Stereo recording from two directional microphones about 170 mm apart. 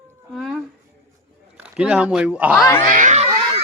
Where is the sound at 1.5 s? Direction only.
5° right (ahead or behind).